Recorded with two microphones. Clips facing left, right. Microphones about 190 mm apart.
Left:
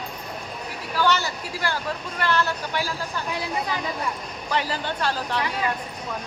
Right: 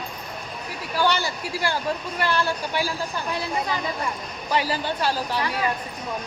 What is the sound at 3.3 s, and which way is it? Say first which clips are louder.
Speech: right 1 dB; 10° left (ahead or behind).